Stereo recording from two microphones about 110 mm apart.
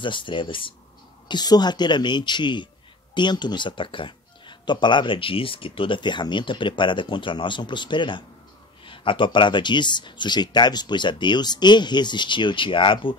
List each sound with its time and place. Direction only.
0.0 s speech: 50° left (ahead or behind)
1.3 s speech: 40° left (ahead or behind)